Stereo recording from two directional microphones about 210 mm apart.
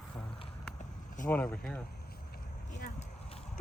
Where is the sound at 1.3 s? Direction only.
5° left (ahead or behind).